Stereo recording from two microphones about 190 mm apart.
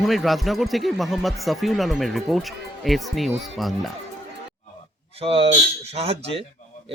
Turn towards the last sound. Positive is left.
turn(degrees=-30)  # may be behind; listen again after turning